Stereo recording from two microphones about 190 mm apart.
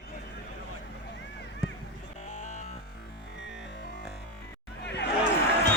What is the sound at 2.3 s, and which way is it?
Music, 40° left (ahead or behind).